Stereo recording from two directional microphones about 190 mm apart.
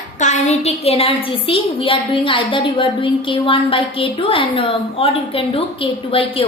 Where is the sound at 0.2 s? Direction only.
35° left (ahead or behind).